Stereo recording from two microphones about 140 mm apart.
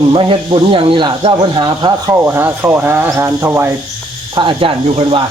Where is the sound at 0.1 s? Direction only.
40° right (ahead or behind).